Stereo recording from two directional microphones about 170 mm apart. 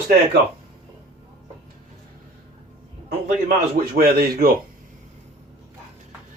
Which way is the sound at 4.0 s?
65° right (ahead or behind).